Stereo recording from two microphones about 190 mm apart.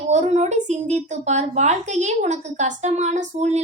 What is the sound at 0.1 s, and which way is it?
A woman's voice, 35° right (ahead or behind).